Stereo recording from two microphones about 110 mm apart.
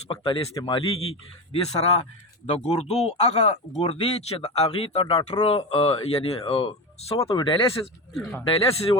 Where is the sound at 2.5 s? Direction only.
80° left; by 7.2 s 65° left (ahead or behind).